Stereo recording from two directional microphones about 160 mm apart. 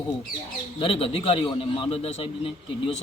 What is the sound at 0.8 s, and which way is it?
A man's voice, 35° left (ahead or behind).